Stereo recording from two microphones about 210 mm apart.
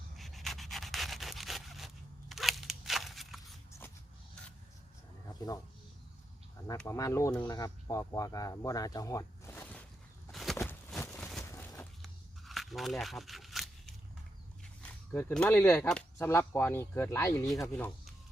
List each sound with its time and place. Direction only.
0.2 s rub: centre (ahead or behind)
2.3 s scissors: centre (ahead or behind)
5.3 s speech: 15° left (ahead or behind)
6.7 s speech: 15° left (ahead or behind)
10.3 s a sound: centre (ahead or behind)
11.4 s a sound: 15° left (ahead or behind)
14.8 s speech: 5° left (ahead or behind)